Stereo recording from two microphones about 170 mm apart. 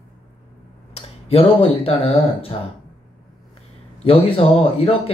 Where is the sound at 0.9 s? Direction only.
35° left (ahead or behind).